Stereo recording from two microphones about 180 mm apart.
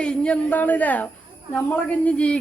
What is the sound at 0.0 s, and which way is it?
Speech, 5° left (ahead or behind).